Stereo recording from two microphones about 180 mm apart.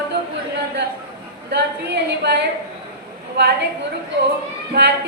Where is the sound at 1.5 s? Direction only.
70° right (ahead or behind).